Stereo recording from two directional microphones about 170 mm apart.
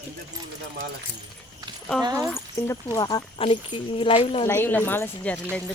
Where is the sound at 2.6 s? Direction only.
20° left (ahead or behind).